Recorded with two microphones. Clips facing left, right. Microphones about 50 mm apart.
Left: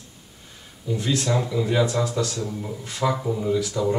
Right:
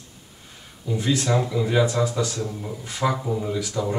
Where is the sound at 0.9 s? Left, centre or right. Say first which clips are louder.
Right 1 dB; centre.